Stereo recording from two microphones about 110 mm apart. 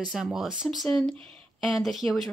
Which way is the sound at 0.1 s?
5° right (ahead or behind).